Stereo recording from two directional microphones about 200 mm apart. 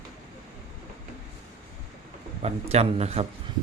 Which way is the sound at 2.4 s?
30° right (ahead or behind).